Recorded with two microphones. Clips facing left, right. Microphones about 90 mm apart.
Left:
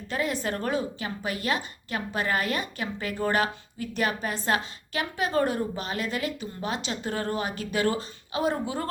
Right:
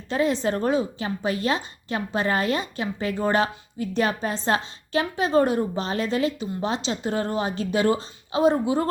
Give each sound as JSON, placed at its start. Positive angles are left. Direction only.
{"t": 0.1, "sound": "a woman's voice", "side_deg": -25}